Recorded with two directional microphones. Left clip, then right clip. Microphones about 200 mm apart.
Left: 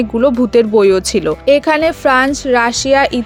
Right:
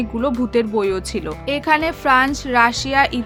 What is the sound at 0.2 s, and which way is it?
A woman's voice, 30° left (ahead or behind).